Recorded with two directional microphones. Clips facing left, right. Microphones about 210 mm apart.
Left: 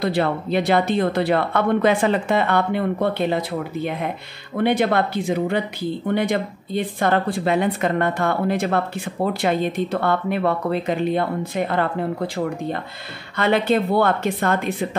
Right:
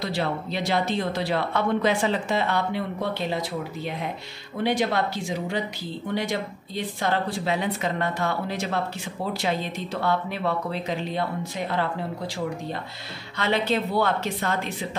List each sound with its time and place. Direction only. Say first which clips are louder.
0.0 s a woman's voice: left 6 dB; 55° left (ahead or behind)